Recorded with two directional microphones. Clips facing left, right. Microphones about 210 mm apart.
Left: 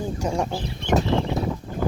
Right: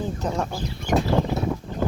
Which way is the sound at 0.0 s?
10° left (ahead or behind).